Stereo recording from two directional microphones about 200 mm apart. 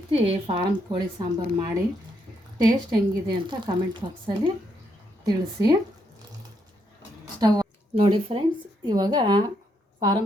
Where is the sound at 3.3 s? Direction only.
25° right (ahead or behind).